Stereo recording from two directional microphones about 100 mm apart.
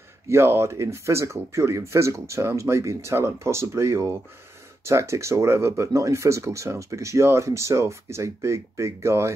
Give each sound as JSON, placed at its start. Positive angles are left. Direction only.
{"t": 0.3, "sound": "speech", "side_deg": -25}